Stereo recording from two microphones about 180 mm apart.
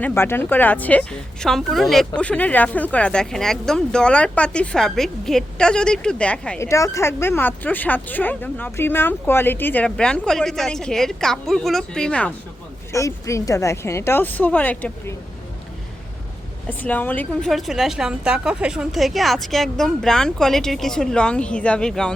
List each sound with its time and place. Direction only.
0.0 s speech: 10° left (ahead or behind)
6.7 s speech: 15° left (ahead or behind)
12.9 s speech: 15° left (ahead or behind)
16.6 s speech: 10° left (ahead or behind)